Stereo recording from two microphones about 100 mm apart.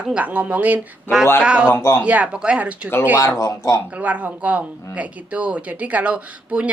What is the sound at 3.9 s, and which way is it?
Speech, 15° right (ahead or behind).